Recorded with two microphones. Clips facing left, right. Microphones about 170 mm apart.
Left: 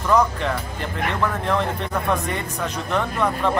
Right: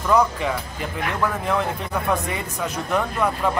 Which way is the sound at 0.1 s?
5° right (ahead or behind).